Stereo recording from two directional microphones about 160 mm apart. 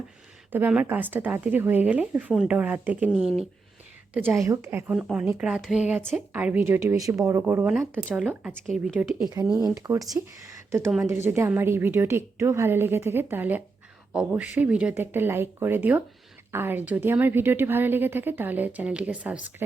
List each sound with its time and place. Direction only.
0.5 s a woman's voice: 10° right (ahead or behind)
9.3 s a woman's voice: 25° right (ahead or behind); by 19.4 s 10° right (ahead or behind)